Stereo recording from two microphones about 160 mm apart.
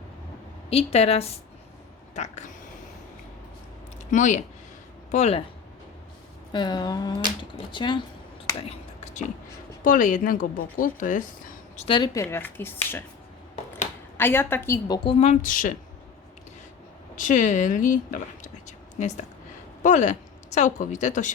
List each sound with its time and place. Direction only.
0.7 s a woman's voice: 40° left (ahead or behind)
4.1 s speech: 50° left (ahead or behind)
6.5 s a sound: 25° left (ahead or behind)
9.8 s speech: 55° left (ahead or behind)
11.9 s speech: 30° left (ahead or behind); by 13.0 s 15° left (ahead or behind)
14.2 s speech: 15° left (ahead or behind)
14.8 s speech: 30° left (ahead or behind); by 15.7 s 55° left (ahead or behind)
17.2 s speech: 55° left (ahead or behind)